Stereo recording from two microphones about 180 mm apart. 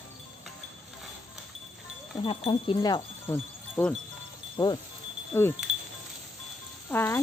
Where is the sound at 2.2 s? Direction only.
30° left (ahead or behind).